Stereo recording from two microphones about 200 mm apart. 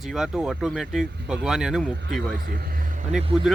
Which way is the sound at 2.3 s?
50° right (ahead or behind).